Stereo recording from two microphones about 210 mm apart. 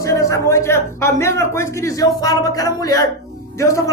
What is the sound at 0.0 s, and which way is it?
Speech, 15° left (ahead or behind).